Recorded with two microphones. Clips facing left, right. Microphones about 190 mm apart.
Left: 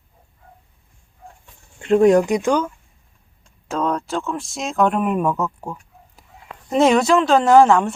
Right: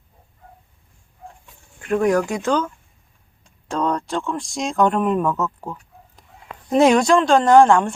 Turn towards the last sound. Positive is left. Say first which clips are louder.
# even
turn(degrees=5)  # may be behind; listen again after turning